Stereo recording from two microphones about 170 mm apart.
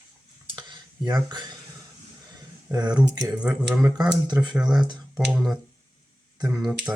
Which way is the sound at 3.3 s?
5° right (ahead or behind).